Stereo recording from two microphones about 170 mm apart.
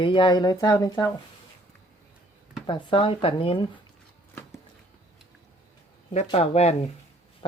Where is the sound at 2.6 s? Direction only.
30° left (ahead or behind).